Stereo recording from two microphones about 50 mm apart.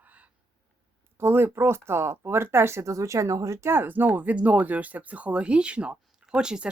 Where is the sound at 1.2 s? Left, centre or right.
Right.